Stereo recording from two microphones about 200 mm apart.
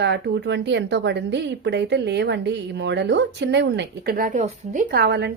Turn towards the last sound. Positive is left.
turn(degrees=-55)  # may be behind; listen again after turning